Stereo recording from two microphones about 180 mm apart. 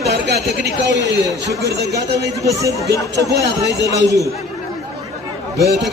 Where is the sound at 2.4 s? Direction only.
20° right (ahead or behind).